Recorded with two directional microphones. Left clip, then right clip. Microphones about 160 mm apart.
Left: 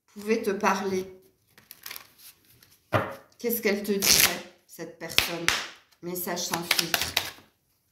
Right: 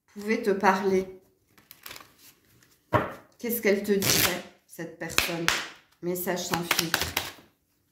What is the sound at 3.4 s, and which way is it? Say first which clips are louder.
Speech: right 2 dB; 45° right (ahead or behind).